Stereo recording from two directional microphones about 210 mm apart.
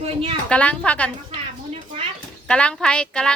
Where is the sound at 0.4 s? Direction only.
5° left (ahead or behind).